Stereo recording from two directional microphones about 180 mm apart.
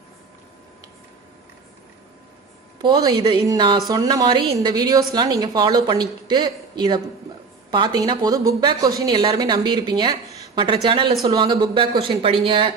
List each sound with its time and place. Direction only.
2.8 s a woman's voice: 20° right (ahead or behind)